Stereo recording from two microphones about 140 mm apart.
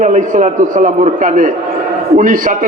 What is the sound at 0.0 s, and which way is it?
A man's voice, 60° right (ahead or behind).